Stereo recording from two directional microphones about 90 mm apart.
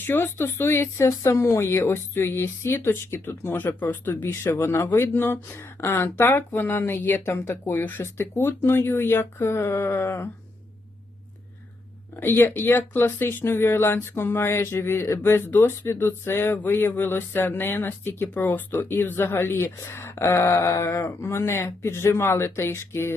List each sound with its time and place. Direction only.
0.0 s speech: 25° left (ahead or behind)
12.2 s speech: 25° left (ahead or behind)